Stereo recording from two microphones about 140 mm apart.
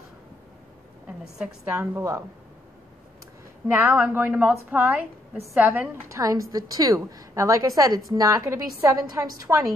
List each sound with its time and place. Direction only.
1.0 s a sound: 5° right (ahead or behind)
1.6 s a woman's voice: 20° right (ahead or behind)
3.6 s a woman's voice: 15° right (ahead or behind)
6.0 s a woman's voice: 20° right (ahead or behind)